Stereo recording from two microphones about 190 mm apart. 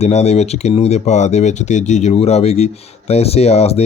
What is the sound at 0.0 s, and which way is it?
Speech, 35° left (ahead or behind).